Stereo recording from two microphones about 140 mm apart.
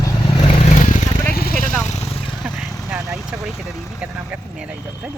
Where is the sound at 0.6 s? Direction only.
60° left (ahead or behind).